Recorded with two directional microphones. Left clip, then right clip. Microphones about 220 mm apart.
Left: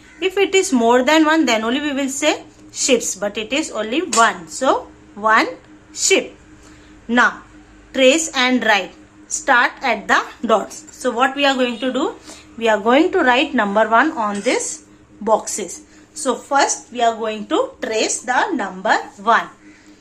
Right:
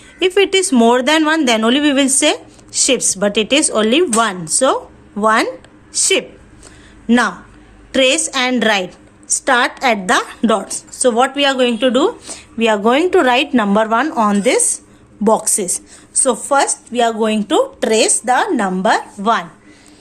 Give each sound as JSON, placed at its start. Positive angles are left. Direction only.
{"t": 0.2, "sound": "speech", "side_deg": -40}